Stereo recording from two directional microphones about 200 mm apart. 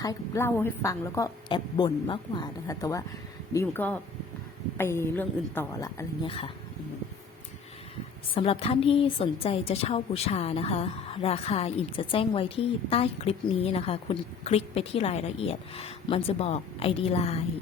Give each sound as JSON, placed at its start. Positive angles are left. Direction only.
{"t": 0.0, "sound": "a woman's voice", "side_deg": 15}
{"t": 8.4, "sound": "a woman's voice", "side_deg": 30}